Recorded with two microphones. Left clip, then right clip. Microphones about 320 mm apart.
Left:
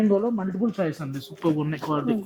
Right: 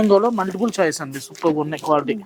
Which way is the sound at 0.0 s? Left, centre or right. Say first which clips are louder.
Right 8 dB; centre.